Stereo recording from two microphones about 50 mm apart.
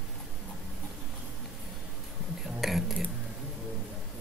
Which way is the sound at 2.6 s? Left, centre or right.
Centre.